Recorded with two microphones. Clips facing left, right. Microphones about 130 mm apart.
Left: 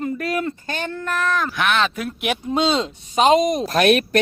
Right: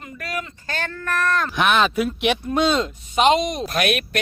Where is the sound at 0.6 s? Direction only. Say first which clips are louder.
Left 2 dB; 20° left (ahead or behind).